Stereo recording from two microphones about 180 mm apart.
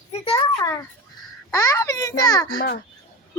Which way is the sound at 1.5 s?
20° left (ahead or behind).